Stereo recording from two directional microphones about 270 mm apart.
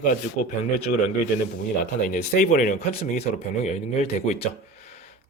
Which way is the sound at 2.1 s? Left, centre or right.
Left.